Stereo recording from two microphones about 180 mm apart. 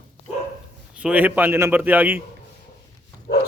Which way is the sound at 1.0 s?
10° right (ahead or behind).